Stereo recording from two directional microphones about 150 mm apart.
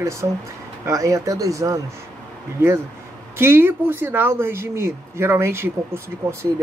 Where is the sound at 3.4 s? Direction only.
15° right (ahead or behind).